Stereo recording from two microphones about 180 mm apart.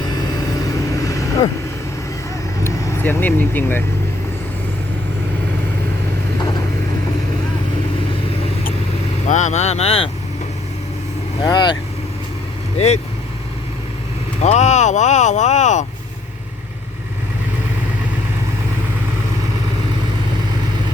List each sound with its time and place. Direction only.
1.0 s vehicle: 20° left (ahead or behind)
2.6 s speech: 10° left (ahead or behind)
9.2 s speech: 40° left (ahead or behind)
11.4 s speech: 25° left (ahead or behind)
12.7 s speech: 35° left (ahead or behind)
14.4 s speech: 40° left (ahead or behind)